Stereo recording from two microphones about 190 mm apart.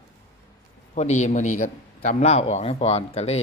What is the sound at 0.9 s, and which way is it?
A man's voice, 40° left (ahead or behind).